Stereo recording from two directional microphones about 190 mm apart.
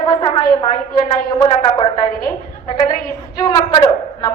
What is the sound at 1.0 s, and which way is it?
Speech, 25° left (ahead or behind).